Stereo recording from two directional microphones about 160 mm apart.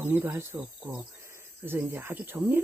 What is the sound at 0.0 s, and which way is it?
Speech, 15° right (ahead or behind).